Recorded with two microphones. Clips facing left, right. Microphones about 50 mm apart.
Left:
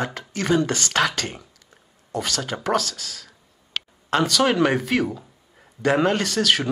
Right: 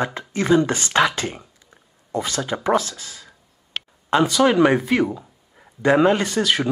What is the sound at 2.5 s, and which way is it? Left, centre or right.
Speech, right.